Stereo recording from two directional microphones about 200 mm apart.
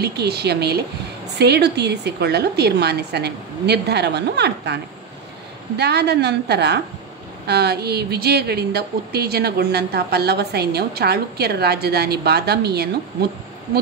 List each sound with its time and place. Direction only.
0.0 s a woman's voice: 55° right (ahead or behind)
5.8 s a woman's voice: 55° right (ahead or behind)